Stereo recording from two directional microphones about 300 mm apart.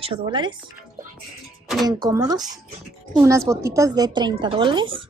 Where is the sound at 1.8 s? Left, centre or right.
Centre.